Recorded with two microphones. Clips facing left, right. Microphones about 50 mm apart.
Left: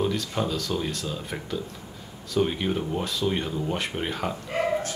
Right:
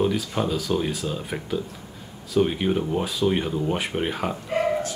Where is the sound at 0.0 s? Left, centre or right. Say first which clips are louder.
Right 3 dB; centre.